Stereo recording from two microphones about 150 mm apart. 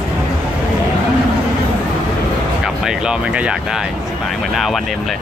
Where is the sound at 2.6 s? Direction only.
5° right (ahead or behind).